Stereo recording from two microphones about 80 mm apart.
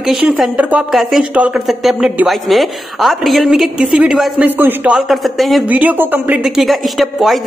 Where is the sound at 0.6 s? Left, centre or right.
Centre.